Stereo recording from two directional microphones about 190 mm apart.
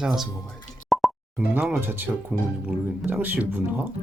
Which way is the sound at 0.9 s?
Centre (ahead or behind).